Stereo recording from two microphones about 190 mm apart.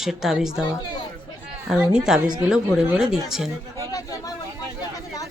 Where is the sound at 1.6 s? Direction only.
5° right (ahead or behind).